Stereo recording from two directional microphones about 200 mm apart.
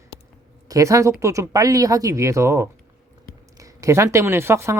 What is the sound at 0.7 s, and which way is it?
Speech, 15° right (ahead or behind).